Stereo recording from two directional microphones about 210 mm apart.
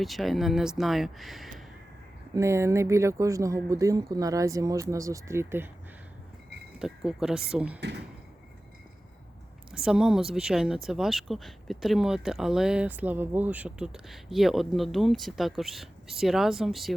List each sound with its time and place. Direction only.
0.0 s speech: centre (ahead or behind)
2.3 s speech: 15° right (ahead or behind)
6.7 s speech: 5° right (ahead or behind)
7.8 s speech: 55° right (ahead or behind)
9.8 s speech: centre (ahead or behind)